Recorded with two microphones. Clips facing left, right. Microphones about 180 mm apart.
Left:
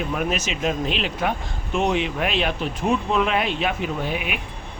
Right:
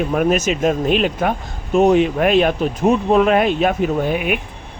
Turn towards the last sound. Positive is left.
turn(degrees=-50)  # may be behind; listen again after turning